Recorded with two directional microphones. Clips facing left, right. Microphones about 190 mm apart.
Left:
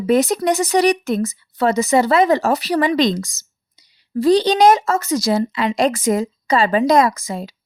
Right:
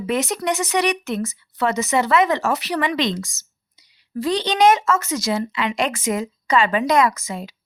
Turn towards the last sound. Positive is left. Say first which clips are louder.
# left 2 dB
turn(degrees=35)  # may be behind; listen again after turning